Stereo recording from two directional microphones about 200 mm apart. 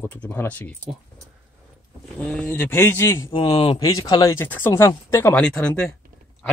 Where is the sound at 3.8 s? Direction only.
20° left (ahead or behind).